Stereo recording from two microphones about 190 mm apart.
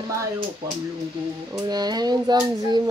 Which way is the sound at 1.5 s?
20° right (ahead or behind).